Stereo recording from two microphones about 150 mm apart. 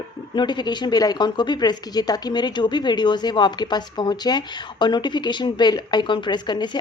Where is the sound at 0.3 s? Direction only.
30° left (ahead or behind).